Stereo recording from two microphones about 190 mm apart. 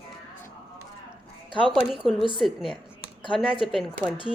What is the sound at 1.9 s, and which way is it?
A woman's voice, 5° right (ahead or behind).